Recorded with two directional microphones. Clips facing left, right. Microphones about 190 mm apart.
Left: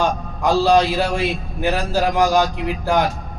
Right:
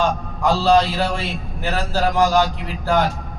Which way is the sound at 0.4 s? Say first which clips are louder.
Left 1 dB; 15° left (ahead or behind).